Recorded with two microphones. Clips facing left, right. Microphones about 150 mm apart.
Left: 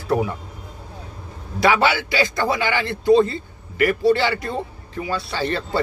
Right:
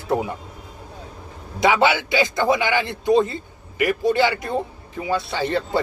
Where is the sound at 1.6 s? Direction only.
15° right (ahead or behind).